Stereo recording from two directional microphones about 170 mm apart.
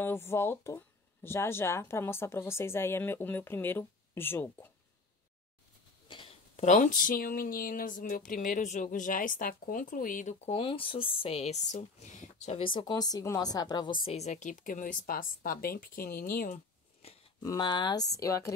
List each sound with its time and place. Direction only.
0.0 s speech: 15° left (ahead or behind)
6.0 s a sound: 30° left (ahead or behind)
6.5 s a woman's voice: 45° left (ahead or behind); by 13.9 s 25° left (ahead or behind)
14.0 s a woman's voice: 40° left (ahead or behind)
17.4 s speech: 25° left (ahead or behind)